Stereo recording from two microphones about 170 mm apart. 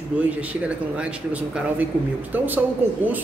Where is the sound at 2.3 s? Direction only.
10° right (ahead or behind).